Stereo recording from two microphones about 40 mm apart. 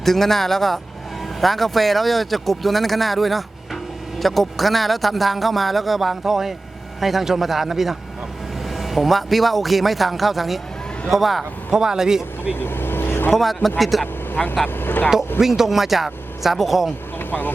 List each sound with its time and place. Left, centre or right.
0.0 s speech: centre
11.7 s a man's voice: centre
12.5 s vehicle: left
13.3 s speech: centre
14.4 s speech: centre
14.8 s speech: left
15.4 s speech: centre
17.2 s vehicle: left